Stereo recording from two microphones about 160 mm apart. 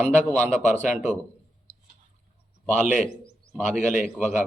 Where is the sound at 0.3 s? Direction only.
10° left (ahead or behind).